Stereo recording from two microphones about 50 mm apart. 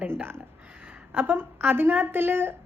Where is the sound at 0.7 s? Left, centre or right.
Right.